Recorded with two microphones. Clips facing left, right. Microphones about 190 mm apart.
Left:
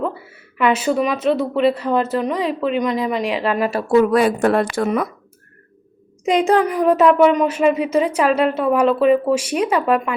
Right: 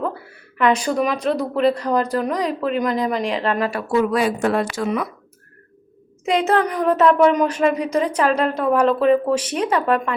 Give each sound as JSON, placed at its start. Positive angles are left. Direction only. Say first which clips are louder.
{"t": 0.0, "sound": "speech", "louder": "left 2 dB", "side_deg": 5}
{"t": 3.8, "sound": "speech", "louder": "left 5 dB", "side_deg": 45}
{"t": 6.2, "sound": "speech", "louder": "left 3 dB", "side_deg": 15}